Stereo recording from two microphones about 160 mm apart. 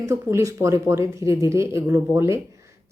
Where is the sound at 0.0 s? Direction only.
20° right (ahead or behind).